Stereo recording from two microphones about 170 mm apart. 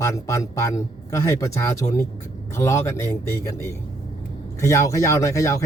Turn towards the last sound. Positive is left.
turn(degrees=20)  # may be behind; listen again after turning